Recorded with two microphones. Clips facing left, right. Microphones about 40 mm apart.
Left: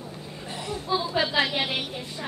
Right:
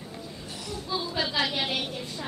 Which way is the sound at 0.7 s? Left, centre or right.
Left.